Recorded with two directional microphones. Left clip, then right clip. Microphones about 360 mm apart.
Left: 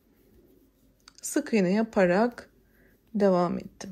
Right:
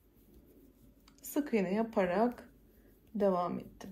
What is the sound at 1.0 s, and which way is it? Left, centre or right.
A woman's voice, centre.